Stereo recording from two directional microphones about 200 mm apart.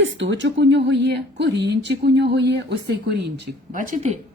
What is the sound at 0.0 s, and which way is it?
Speech, 65° right (ahead or behind).